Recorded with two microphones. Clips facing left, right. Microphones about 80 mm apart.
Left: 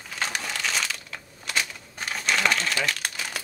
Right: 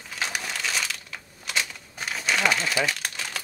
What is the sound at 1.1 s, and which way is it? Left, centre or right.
Crumpling, centre.